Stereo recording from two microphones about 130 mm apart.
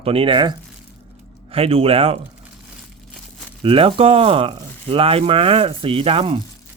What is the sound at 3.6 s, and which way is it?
Speech, 40° right (ahead or behind).